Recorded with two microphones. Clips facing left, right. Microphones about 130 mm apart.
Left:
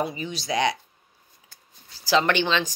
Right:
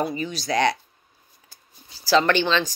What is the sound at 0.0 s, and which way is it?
Speech, 15° left (ahead or behind).